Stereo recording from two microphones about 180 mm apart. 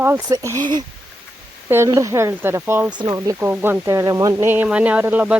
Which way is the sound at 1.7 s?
15° right (ahead or behind).